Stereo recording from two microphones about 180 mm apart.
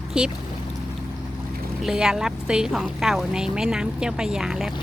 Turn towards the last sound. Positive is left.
turn(degrees=-5)  # may be behind; listen again after turning